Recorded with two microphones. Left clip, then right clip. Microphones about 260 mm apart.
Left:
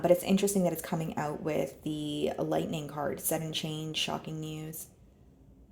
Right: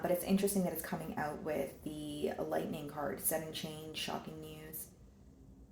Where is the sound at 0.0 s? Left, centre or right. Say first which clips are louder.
Left 8 dB; left.